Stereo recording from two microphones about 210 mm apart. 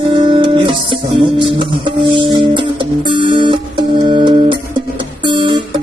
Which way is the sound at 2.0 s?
25° right (ahead or behind).